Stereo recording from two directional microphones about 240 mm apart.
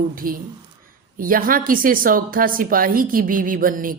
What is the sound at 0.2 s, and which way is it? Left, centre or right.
Speech, right.